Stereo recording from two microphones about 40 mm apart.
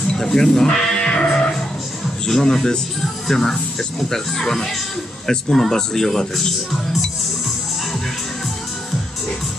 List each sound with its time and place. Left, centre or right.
0.2 s sheep: centre
1.3 s music: centre
2.2 s a man's voice: centre